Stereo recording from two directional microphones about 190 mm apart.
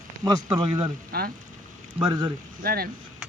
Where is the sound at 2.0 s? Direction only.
25° right (ahead or behind).